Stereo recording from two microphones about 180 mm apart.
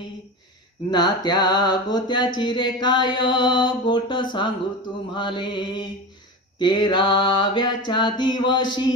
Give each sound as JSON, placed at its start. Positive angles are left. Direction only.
{"t": 0.8, "sound": "mantra", "side_deg": 25}